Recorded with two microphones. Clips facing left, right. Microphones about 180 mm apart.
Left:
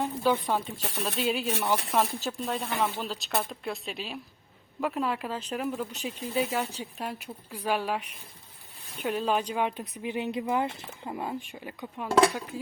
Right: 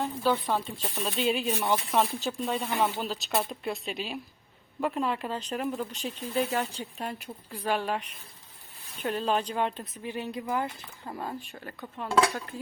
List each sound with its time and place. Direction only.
0.0 s speech: 10° left (ahead or behind)
0.8 s speech: 80° left
1.0 s speech: centre (ahead or behind)